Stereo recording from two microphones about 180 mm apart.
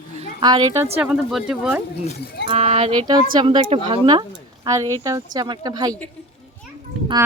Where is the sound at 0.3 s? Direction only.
25° right (ahead or behind).